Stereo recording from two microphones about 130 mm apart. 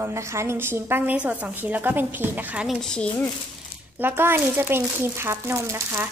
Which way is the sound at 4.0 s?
15° right (ahead or behind).